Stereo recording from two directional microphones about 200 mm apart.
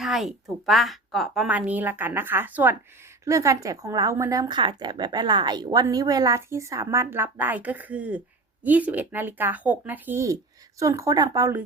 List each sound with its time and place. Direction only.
0.0 s speech: centre (ahead or behind)